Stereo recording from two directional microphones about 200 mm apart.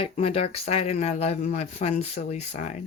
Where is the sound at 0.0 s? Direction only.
30° left (ahead or behind).